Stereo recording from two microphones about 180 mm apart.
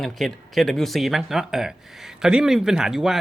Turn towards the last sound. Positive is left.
turn(degrees=0)  # may be behind; listen again after turning